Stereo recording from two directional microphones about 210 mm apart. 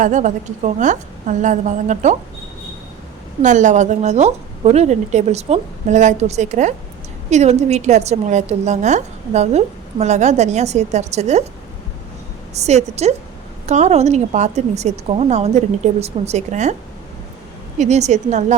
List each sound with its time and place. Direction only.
0.0 s a woman's voice: 35° right (ahead or behind)
3.4 s a woman's voice: 35° right (ahead or behind)
12.5 s a woman's voice: 30° right (ahead or behind)
17.7 s a woman's voice: 30° right (ahead or behind)